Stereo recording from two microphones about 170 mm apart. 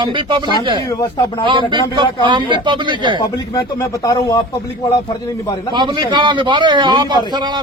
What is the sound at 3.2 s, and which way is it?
Speech, 20° left (ahead or behind).